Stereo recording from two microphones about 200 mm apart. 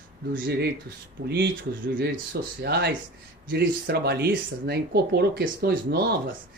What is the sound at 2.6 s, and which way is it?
Speech, 55° right (ahead or behind).